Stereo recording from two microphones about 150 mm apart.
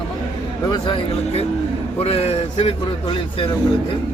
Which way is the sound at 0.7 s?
35° left (ahead or behind).